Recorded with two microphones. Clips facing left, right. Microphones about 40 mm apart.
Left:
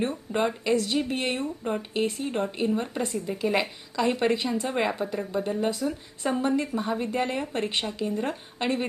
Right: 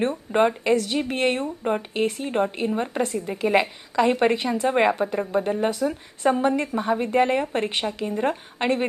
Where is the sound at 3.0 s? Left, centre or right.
Right.